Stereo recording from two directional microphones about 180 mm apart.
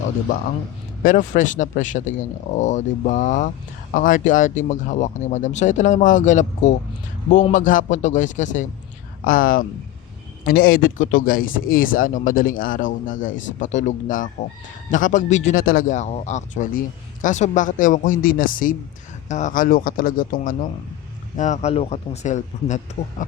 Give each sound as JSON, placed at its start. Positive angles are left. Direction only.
{"t": 1.0, "sound": "speech", "side_deg": 45}
{"t": 21.3, "sound": "speech", "side_deg": 40}